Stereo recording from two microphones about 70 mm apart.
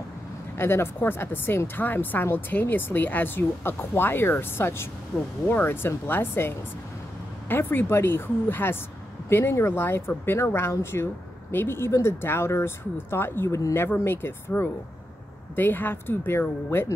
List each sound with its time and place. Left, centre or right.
0.6 s speech: left
5.5 s speech: left
13.5 s speech: left
13.7 s speech: left